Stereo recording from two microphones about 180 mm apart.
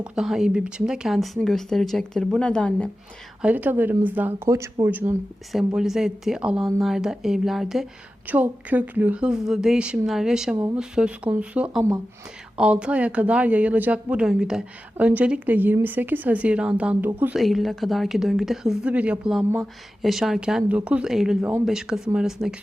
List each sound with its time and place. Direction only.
0.0 s speech: centre (ahead or behind)
3.4 s speech: 10° right (ahead or behind)